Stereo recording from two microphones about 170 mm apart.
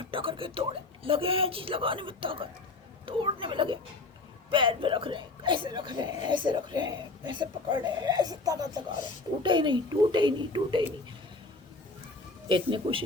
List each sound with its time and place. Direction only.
0.1 s speech: 30° right (ahead or behind)
12.5 s speech: 30° right (ahead or behind)